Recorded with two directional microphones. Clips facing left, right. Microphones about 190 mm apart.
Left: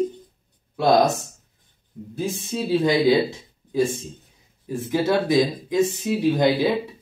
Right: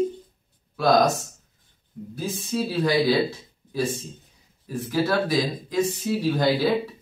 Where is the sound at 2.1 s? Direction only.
25° left (ahead or behind).